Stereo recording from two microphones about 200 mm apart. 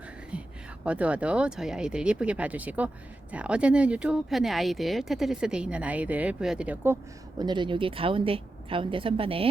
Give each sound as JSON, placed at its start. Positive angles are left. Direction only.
{"t": 0.9, "sound": "speech", "side_deg": -5}
{"t": 7.3, "sound": "a woman's voice", "side_deg": -20}